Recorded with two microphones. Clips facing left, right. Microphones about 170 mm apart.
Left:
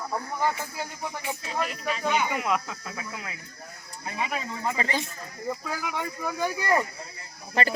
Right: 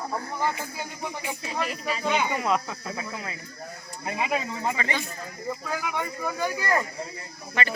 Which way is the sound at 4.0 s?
30° right (ahead or behind).